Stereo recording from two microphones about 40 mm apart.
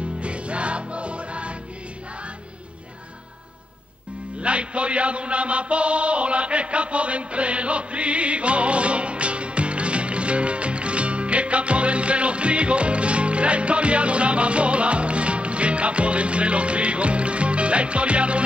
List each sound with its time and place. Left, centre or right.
0.2 s music: right
4.4 s chant: right